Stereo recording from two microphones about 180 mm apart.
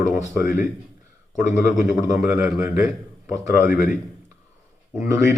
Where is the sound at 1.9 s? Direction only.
20° right (ahead or behind).